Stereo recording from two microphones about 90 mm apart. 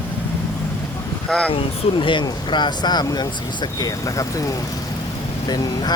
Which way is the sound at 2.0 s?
70° left (ahead or behind).